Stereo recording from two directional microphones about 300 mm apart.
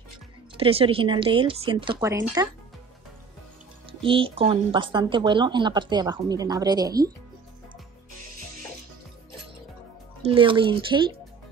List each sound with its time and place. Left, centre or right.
0.6 s speech: centre
4.0 s speech: centre
10.2 s speech: centre